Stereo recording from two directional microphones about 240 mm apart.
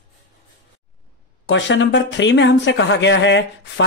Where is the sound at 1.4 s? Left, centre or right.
Left.